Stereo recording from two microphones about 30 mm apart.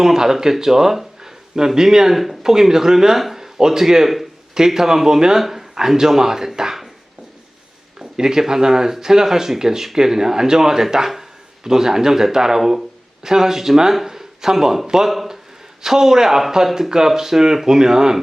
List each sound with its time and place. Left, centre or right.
0.0 s speech: centre
2.1 s speech: centre
2.4 s speech: centre
5.4 s speech: centre
7.9 s speech: right